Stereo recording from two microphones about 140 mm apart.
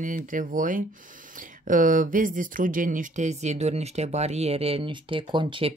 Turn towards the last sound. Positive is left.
turn(degrees=-40)  # may be behind; listen again after turning